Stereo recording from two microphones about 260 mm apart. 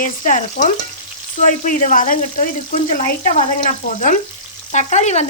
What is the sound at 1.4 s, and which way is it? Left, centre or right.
Frying, left.